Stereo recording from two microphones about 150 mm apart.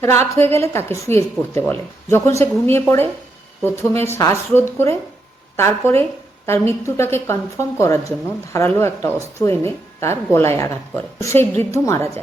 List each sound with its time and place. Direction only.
0.0 s a woman's voice: 15° left (ahead or behind)